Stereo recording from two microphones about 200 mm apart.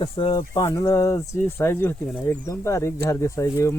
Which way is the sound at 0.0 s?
25° left (ahead or behind).